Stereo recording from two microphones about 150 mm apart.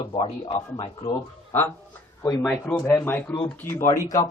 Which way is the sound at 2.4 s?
Centre (ahead or behind).